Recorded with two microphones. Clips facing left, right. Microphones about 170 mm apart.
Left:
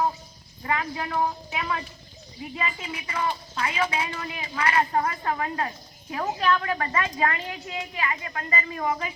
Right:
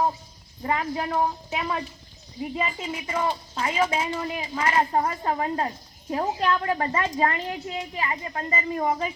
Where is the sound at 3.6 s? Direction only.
45° right (ahead or behind).